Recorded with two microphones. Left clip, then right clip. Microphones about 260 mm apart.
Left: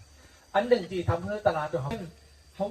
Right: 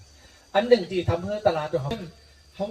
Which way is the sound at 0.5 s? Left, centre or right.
Right.